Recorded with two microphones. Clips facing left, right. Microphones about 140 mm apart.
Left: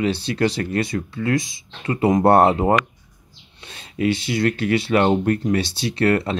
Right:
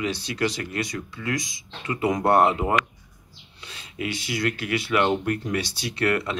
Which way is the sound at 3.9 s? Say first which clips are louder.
Left 9 dB; 30° left (ahead or behind).